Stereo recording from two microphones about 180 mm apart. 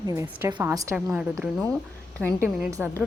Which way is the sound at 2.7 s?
15° right (ahead or behind).